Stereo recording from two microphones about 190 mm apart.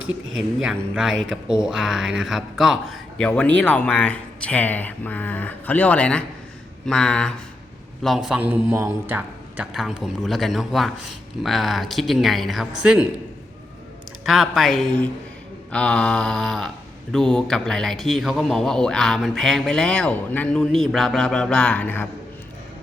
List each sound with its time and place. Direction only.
0.0 s speech: 90° right
0.6 s speech: 5° right (ahead or behind)
14.3 s speech: centre (ahead or behind)